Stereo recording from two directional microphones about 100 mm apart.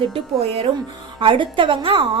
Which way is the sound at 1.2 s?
60° right (ahead or behind).